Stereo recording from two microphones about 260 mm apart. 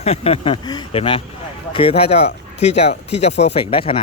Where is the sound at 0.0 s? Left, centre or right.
Left.